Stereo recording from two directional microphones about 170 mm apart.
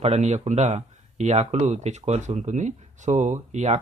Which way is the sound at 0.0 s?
40° right (ahead or behind).